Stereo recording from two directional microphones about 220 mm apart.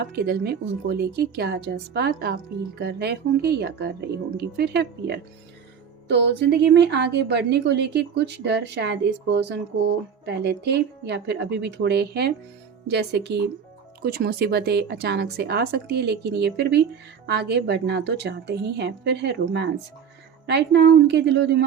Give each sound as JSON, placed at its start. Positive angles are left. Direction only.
{"t": 0.1, "sound": "a woman's voice", "side_deg": -45}